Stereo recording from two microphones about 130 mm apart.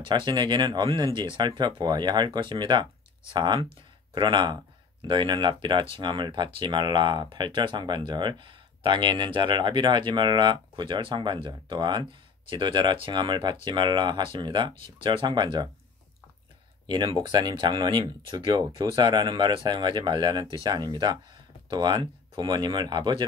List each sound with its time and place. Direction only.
0.0 s speech: 35° right (ahead or behind)
16.8 s speech: 35° right (ahead or behind)